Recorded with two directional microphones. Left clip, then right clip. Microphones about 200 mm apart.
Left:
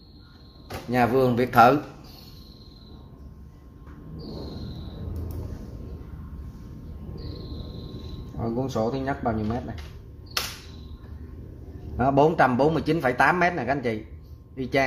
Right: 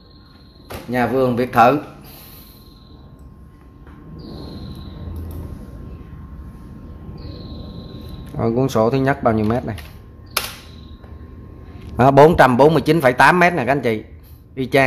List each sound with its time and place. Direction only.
0.9 s speech: 10° left (ahead or behind)
8.4 s a man's voice: 30° right (ahead or behind)
12.0 s a man's voice: 20° right (ahead or behind)